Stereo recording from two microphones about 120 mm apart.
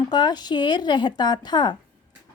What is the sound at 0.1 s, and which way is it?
A woman's voice, 35° left (ahead or behind).